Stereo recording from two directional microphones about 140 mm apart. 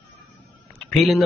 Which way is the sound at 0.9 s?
Centre (ahead or behind).